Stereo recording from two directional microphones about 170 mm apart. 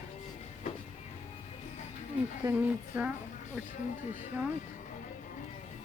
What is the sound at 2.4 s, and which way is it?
Speech, 10° right (ahead or behind).